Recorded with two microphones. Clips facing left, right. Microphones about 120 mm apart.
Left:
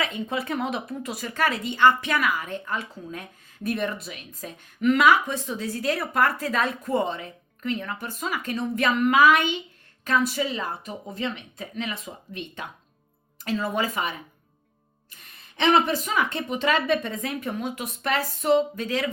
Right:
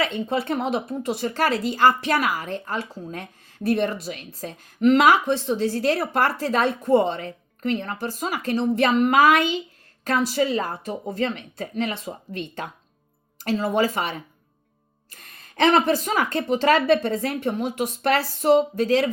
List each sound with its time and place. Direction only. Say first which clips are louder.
0.0 s a woman's voice: right 4 dB; 30° right (ahead or behind)